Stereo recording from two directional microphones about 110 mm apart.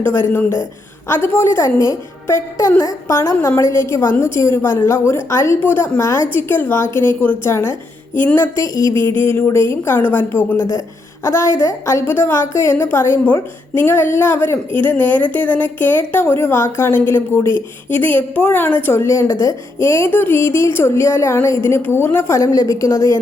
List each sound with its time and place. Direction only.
0.0 s a woman's voice: 20° left (ahead or behind)
9.0 s a sound: 50° right (ahead or behind)
9.3 s a woman's voice: 20° left (ahead or behind)